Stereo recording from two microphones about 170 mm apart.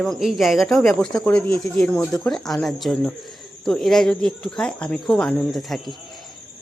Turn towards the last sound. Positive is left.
turn(degrees=0)  # may be behind; listen again after turning